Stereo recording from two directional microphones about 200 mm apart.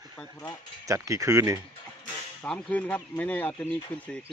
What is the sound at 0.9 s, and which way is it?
Speech, 15° right (ahead or behind).